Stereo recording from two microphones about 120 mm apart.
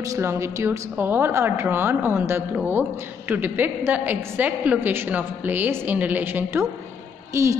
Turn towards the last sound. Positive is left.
turn(degrees=-25)  # may be behind; listen again after turning